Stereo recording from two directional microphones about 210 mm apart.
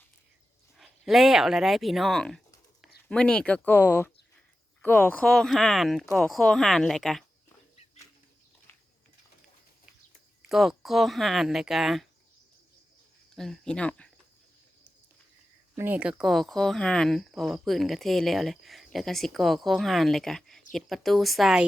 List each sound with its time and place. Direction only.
0.8 s speech: centre (ahead or behind)
10.5 s speech: centre (ahead or behind)
13.3 s speech: centre (ahead or behind)
15.7 s speech: 10° right (ahead or behind)